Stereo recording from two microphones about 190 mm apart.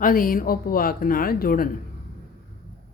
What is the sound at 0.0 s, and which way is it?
Speech, 50° left (ahead or behind).